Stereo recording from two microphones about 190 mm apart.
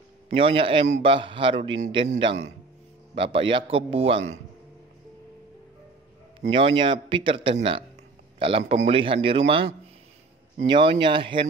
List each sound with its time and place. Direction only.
0.3 s a man's voice: 30° right (ahead or behind)
6.4 s a man's voice: 30° right (ahead or behind)